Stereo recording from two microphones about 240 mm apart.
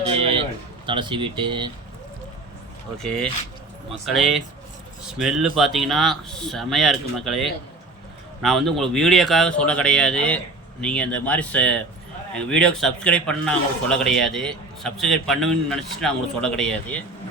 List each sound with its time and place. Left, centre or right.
0.0 s a sound: right
0.9 s speech: centre
3.0 s a man's voice: centre